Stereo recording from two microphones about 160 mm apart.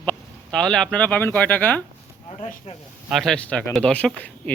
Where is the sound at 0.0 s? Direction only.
5° left (ahead or behind).